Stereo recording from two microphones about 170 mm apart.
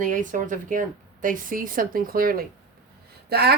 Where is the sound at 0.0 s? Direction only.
50° right (ahead or behind).